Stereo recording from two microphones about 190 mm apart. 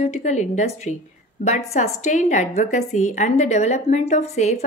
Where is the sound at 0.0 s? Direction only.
40° left (ahead or behind).